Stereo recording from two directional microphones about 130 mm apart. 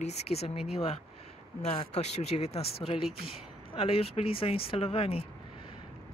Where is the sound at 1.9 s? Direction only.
55° left (ahead or behind).